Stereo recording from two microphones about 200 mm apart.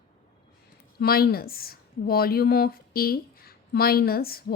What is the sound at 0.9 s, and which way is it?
Speech, 50° left (ahead or behind).